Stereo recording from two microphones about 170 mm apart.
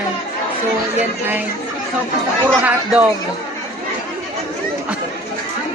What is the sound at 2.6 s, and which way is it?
Speech, 10° right (ahead or behind).